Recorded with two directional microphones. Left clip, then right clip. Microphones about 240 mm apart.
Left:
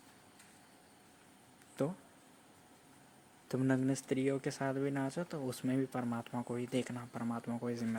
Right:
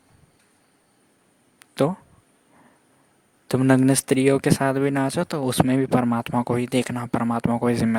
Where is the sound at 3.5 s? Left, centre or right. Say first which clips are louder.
Right 16 dB; right.